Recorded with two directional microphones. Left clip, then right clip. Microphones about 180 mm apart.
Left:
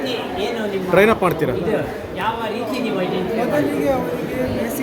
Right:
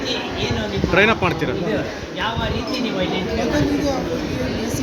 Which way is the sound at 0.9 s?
20° left (ahead or behind).